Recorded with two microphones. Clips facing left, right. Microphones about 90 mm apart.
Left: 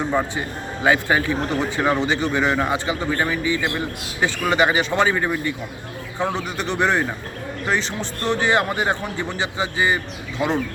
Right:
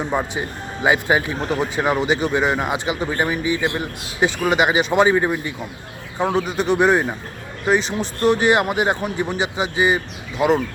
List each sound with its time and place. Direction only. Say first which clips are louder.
0.1 s speech: even; 15° right (ahead or behind)